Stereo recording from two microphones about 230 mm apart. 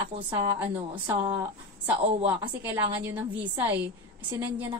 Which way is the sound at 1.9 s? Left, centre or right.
Right.